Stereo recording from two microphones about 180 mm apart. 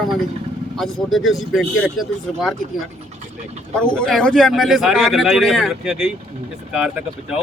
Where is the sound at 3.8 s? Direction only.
5° left (ahead or behind).